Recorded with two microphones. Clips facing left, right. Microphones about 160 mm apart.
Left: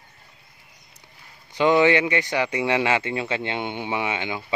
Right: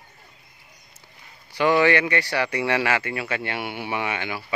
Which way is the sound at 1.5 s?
20° left (ahead or behind).